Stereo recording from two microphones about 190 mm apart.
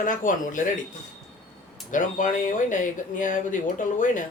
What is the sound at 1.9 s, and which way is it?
Speech, 45° left (ahead or behind).